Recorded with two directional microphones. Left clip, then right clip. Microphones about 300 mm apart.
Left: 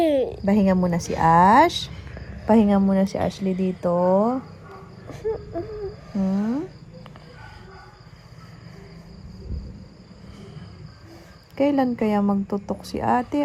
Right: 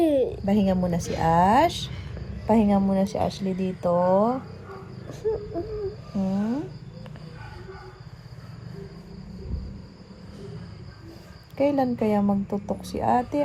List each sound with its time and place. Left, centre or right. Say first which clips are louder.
0.0 s a sound: left 1 dB; centre
0.4 s speech: left 3 dB; left
5.0 s a sound: even; centre
6.1 s speech: left 3 dB; left
11.5 s speech: left 2 dB; left
12.2 s speech: left 2 dB; left
12.8 s speech: left 1 dB; left